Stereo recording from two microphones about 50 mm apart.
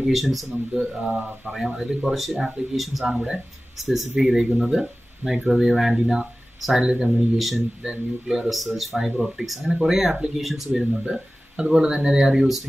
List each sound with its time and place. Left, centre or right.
0.0 s speech: centre
7.3 s speech: centre
11.1 s speech: centre